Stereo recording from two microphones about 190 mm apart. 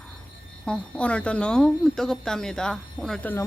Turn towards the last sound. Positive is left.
turn(degrees=5)  # may be behind; listen again after turning